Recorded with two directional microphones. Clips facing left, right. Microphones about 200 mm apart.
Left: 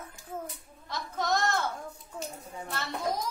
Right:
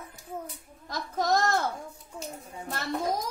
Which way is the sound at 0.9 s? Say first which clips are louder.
Right 3 dB; 40° right (ahead or behind).